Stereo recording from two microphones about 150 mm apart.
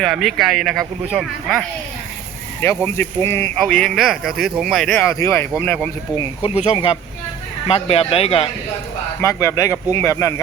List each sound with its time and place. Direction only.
0.0 s speech: centre (ahead or behind)
2.6 s speech: 15° left (ahead or behind)
3.6 s speech: 5° left (ahead or behind)
6.1 s speech: 40° left (ahead or behind)
9.2 s speech: 20° left (ahead or behind)